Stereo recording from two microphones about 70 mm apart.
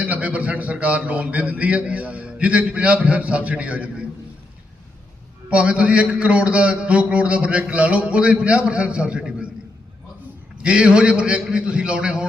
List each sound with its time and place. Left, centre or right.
0.1 s a man's voice: right
5.5 s a man's voice: centre
10.6 s a man's voice: centre